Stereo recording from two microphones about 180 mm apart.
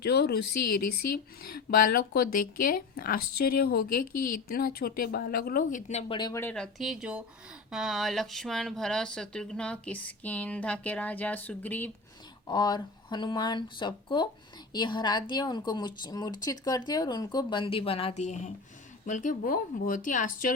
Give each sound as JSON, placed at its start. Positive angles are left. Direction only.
{"t": 0.0, "sound": "speech", "side_deg": 65}
{"t": 1.1, "sound": "speech", "side_deg": 55}
{"t": 6.1, "sound": "a woman's voice", "side_deg": 25}
{"t": 6.4, "sound": "speech", "side_deg": 5}
{"t": 12.5, "sound": "a woman's voice", "side_deg": 25}